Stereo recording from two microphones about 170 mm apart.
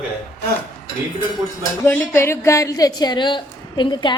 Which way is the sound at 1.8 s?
15° left (ahead or behind).